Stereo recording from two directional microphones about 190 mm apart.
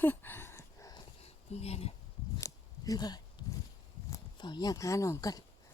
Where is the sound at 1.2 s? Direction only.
30° left (ahead or behind).